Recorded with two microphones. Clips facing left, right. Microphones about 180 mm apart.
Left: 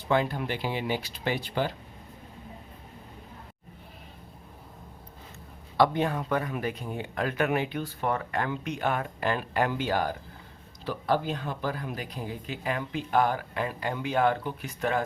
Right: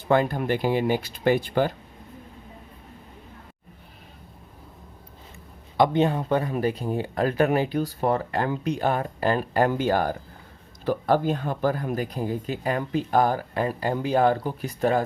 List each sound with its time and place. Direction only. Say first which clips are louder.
0.1 s speech: right 5 dB; 50° right (ahead or behind)
5.7 s speech: right 4 dB; 20° right (ahead or behind)